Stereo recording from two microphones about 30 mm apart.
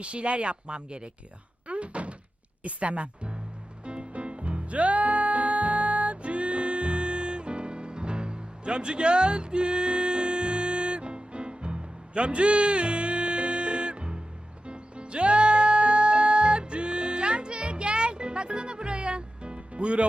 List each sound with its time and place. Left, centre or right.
0.0 s speech: right
1.6 s door: right
2.6 s speech: right
3.8 s music: right